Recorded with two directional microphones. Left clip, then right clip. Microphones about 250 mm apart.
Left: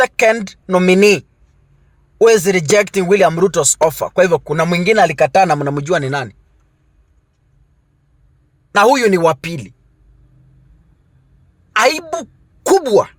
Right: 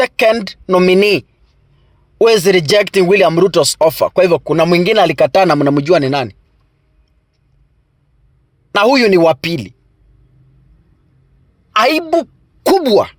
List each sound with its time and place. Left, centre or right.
0.0 s speech: right
8.7 s speech: right
11.7 s a woman's voice: right